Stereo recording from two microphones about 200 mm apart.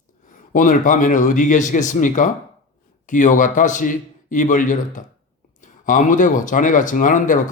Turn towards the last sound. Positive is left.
turn(degrees=40)  # may be behind; listen again after turning